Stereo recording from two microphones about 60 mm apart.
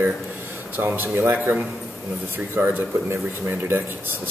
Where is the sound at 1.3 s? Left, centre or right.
Right.